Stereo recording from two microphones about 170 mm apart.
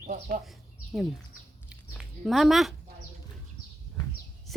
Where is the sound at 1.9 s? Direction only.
Centre (ahead or behind).